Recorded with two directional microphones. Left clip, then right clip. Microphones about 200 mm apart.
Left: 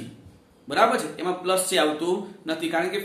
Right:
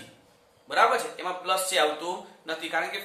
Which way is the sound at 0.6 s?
10° left (ahead or behind).